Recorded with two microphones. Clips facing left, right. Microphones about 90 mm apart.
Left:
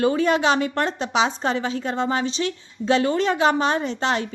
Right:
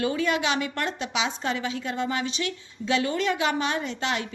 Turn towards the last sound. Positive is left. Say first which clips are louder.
# left 5 dB
turn(degrees=35)  # may be behind; listen again after turning